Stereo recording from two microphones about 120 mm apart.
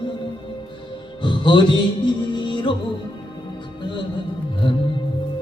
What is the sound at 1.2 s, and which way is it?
Music, 40° left (ahead or behind).